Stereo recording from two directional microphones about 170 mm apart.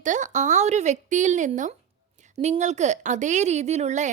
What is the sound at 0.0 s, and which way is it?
A woman's voice, 45° right (ahead or behind).